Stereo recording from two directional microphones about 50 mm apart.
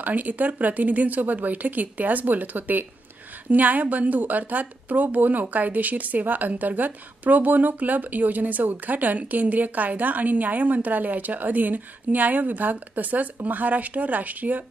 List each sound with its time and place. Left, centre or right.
0.0 s a woman's voice: right